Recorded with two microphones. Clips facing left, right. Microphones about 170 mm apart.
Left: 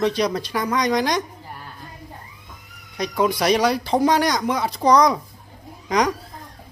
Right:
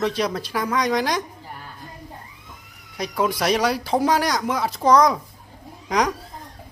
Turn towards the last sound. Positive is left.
turn(degrees=-5)  # may be behind; listen again after turning